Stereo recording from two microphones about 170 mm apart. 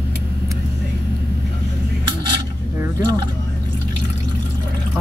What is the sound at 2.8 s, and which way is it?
Speech, 25° right (ahead or behind).